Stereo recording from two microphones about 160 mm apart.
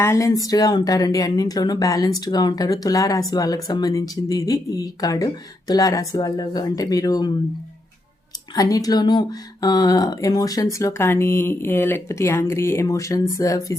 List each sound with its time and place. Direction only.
0.0 s speech: 20° left (ahead or behind)
8.5 s speech: 20° left (ahead or behind)